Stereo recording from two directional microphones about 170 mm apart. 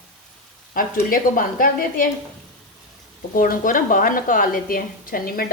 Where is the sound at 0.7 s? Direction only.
55° left (ahead or behind).